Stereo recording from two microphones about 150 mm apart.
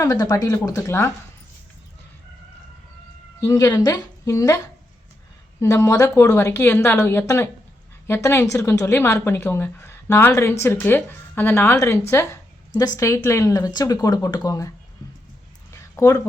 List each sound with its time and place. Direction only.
0.0 s speech: 25° left (ahead or behind)
3.4 s a woman's voice: 25° left (ahead or behind)
15.7 s a sound: 20° left (ahead or behind)